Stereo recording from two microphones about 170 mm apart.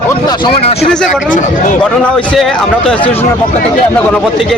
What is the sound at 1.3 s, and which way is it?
Speech, 50° left (ahead or behind).